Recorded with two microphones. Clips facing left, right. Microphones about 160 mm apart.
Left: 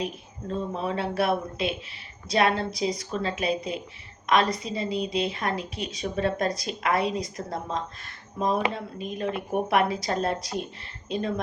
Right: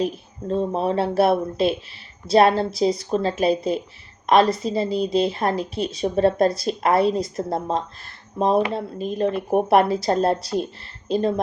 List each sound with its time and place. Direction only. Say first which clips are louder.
0.0 s a woman's voice: right 7 dB; 35° right (ahead or behind)